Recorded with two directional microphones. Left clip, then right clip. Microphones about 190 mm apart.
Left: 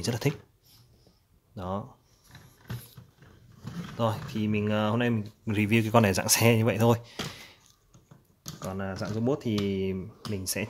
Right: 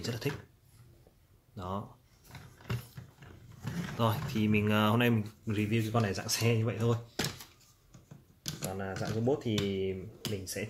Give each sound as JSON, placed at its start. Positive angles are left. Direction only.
{"t": 0.0, "sound": "speech", "side_deg": 40}
{"t": 1.5, "sound": "speech", "side_deg": 25}
{"t": 3.9, "sound": "speech", "side_deg": 20}
{"t": 5.5, "sound": "speech", "side_deg": 40}
{"t": 8.7, "sound": "speech", "side_deg": 50}